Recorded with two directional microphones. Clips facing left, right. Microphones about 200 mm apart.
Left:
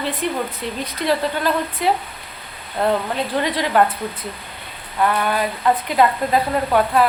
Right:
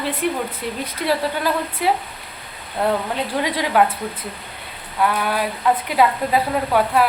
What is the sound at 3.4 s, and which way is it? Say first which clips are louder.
Speech: even; 10° right (ahead or behind).